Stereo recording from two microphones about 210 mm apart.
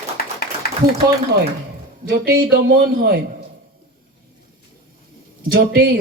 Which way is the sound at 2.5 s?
45° right (ahead or behind).